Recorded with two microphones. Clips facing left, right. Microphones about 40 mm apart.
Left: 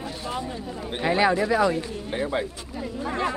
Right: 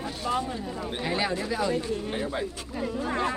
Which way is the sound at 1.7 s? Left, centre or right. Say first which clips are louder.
Even; centre.